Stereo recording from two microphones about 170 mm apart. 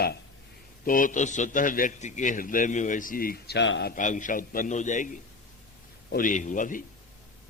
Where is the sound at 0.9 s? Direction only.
55° left (ahead or behind); by 3.9 s 85° left.